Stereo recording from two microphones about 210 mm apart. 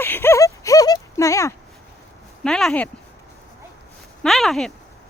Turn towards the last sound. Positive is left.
turn(degrees=0)  # may be behind; listen again after turning